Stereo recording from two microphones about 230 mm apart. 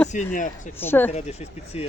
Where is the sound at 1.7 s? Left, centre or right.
Left.